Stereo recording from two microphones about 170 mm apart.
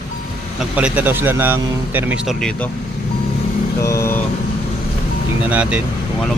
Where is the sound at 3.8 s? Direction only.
15° left (ahead or behind).